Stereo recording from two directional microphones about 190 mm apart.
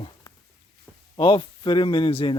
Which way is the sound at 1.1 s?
25° left (ahead or behind).